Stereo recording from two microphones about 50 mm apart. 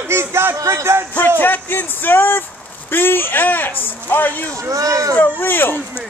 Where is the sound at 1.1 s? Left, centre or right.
Left.